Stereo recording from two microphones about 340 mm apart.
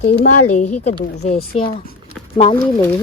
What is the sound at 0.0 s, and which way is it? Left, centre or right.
Speech, left.